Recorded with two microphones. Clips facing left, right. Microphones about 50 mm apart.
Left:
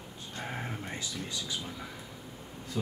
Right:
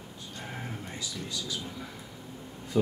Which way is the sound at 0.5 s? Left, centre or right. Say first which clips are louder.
Even; centre.